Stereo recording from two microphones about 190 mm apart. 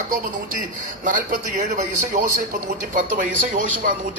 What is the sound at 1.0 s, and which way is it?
A man's voice, 45° right (ahead or behind).